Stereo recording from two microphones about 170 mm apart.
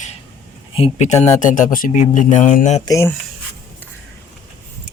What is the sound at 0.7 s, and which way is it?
Speech, 40° left (ahead or behind).